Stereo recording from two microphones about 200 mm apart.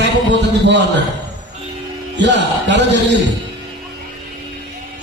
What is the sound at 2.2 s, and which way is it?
Speech, 60° right (ahead or behind).